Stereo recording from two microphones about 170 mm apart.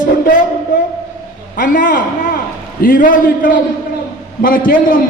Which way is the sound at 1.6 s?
55° left (ahead or behind).